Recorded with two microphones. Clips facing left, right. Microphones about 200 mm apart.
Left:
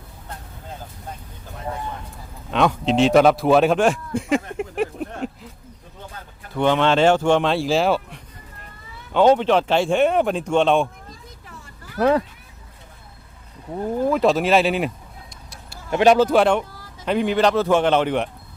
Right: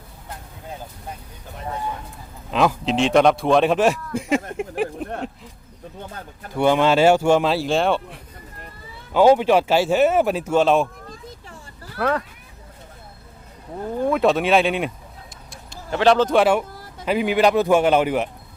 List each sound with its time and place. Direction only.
2.5 s speech: centre (ahead or behind)
6.5 s speech: 10° right (ahead or behind)
11.9 s speech: 20° left (ahead or behind)
13.9 s speech: 5° left (ahead or behind)
15.9 s speech: 15° left (ahead or behind); by 18.3 s 5° right (ahead or behind)